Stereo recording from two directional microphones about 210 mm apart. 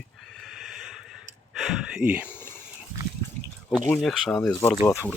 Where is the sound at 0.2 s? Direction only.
Centre (ahead or behind).